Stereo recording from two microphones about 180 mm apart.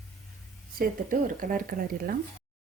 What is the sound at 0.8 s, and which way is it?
A woman's voice, 50° right (ahead or behind).